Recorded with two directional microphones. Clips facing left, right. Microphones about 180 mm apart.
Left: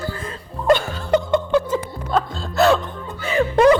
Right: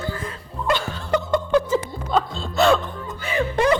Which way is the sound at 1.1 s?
25° left (ahead or behind).